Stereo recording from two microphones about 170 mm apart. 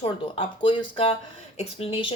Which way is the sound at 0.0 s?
30° left (ahead or behind).